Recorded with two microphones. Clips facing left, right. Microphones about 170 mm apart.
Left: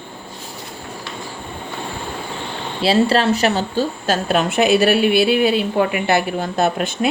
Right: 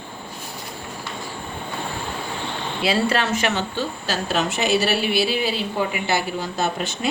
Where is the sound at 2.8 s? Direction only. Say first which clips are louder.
Left 6 dB; 35° left (ahead or behind); by 7.1 s 55° left (ahead or behind).